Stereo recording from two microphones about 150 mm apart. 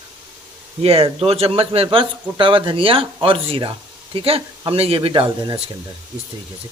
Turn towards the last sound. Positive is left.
turn(degrees=-35)  # may be behind; listen again after turning